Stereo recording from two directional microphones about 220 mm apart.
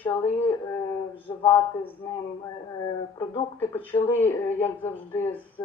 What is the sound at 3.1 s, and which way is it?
Speech, 10° left (ahead or behind).